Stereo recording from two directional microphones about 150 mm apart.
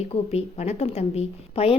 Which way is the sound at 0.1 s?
45° left (ahead or behind).